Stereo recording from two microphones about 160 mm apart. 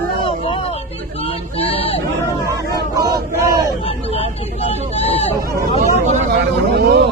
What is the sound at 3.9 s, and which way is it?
Vehicle, 40° left (ahead or behind).